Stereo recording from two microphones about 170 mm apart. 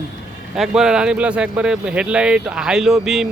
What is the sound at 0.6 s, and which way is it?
Speech, 5° right (ahead or behind).